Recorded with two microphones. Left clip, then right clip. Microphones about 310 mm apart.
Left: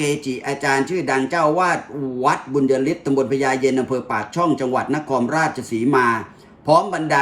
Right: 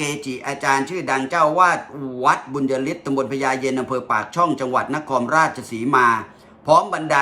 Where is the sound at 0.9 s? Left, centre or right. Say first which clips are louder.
Left 2 dB; centre.